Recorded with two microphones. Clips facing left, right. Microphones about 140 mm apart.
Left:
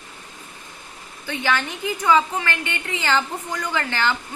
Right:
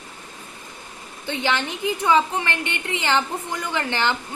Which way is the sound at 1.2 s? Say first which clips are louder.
Even; 20° right (ahead or behind).